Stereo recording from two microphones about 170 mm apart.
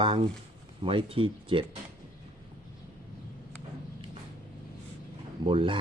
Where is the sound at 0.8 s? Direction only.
30° right (ahead or behind).